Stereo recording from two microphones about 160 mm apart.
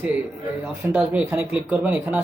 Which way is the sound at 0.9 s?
10° right (ahead or behind).